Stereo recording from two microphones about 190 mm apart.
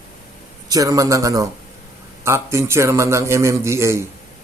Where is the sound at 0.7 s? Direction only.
20° right (ahead or behind).